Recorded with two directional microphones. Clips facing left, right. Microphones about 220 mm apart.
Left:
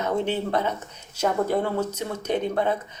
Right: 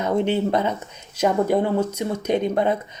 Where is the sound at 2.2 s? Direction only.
15° right (ahead or behind).